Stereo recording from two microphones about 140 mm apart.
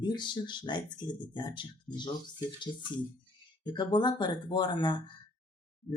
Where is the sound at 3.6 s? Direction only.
35° left (ahead or behind).